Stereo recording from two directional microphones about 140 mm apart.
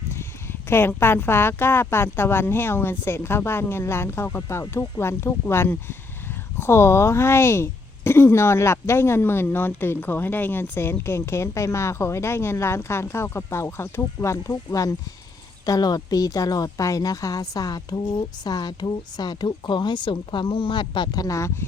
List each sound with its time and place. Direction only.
0.7 s speech: 15° left (ahead or behind)